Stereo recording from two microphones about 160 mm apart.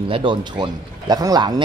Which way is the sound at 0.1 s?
30° right (ahead or behind).